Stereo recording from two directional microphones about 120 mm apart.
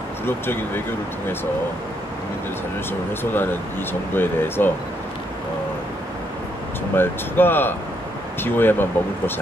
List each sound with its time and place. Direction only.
0.2 s speech: 20° left (ahead or behind)
2.9 s speech: 15° left (ahead or behind)
7.0 s speech: 15° left (ahead or behind)